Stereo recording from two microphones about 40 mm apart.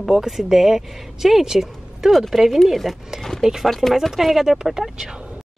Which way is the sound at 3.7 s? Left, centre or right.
Centre.